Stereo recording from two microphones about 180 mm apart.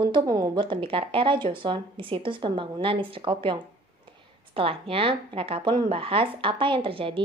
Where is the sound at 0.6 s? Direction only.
30° right (ahead or behind).